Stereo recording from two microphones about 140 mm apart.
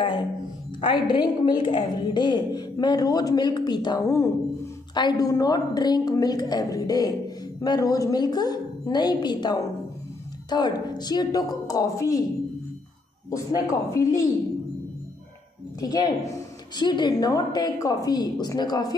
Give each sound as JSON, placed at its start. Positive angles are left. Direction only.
{"t": 0.7, "sound": "a woman's voice", "side_deg": 35}
{"t": 13.3, "sound": "a woman's voice", "side_deg": 25}
{"t": 15.8, "sound": "a woman's voice", "side_deg": 25}